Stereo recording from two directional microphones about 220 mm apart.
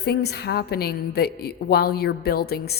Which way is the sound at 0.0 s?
45° left (ahead or behind).